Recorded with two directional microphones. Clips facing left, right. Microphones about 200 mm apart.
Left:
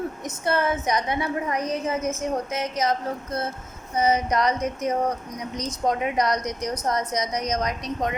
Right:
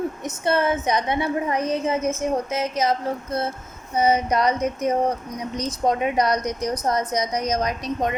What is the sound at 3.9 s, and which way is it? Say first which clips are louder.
A woman's voice: right 2 dB; 30° right (ahead or behind).